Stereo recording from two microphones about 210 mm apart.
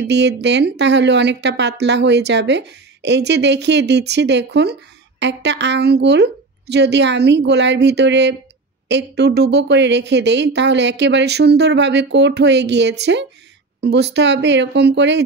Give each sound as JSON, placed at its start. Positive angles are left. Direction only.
{"t": 0.0, "sound": "speech", "side_deg": -55}